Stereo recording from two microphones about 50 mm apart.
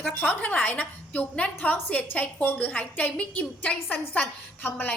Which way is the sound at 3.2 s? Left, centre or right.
Left.